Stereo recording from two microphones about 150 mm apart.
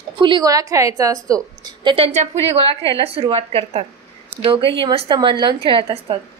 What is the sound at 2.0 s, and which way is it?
Speech, 45° right (ahead or behind).